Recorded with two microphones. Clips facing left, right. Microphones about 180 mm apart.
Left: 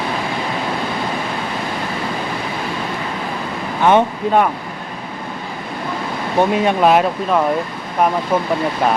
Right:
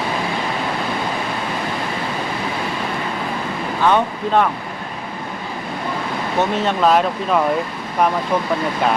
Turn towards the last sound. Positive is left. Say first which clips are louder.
# left 2 dB
turn(degrees=5)  # may be behind; listen again after turning